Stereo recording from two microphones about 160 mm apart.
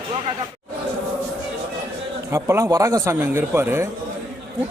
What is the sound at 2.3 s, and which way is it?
Speech, 15° right (ahead or behind).